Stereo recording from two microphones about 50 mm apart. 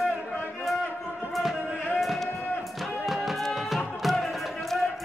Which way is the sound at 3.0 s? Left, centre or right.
Centre.